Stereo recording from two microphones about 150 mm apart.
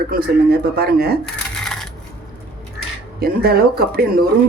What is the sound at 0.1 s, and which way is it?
Speech, 85° right.